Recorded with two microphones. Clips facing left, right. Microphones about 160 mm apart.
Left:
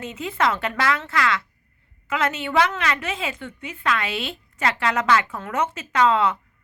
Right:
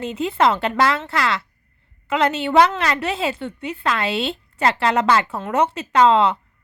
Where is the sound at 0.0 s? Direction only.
30° right (ahead or behind).